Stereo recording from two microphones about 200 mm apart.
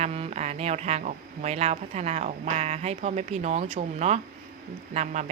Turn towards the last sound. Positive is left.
turn(degrees=-35)  # may be behind; listen again after turning